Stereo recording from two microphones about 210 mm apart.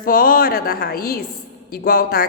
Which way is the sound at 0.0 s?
40° left (ahead or behind).